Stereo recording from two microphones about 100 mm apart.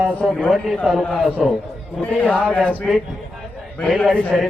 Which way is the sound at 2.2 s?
10° left (ahead or behind).